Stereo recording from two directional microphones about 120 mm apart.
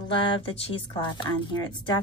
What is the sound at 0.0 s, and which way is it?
A woman's voice, 45° left (ahead or behind).